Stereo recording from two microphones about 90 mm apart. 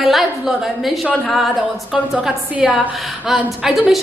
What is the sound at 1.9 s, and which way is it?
A woman's voice, 10° right (ahead or behind).